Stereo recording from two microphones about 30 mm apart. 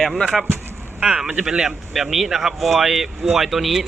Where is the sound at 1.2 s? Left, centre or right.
Right.